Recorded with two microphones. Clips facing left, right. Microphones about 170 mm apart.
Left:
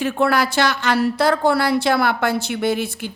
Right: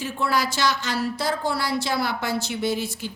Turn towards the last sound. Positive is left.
turn(degrees=60)  # may be behind; listen again after turning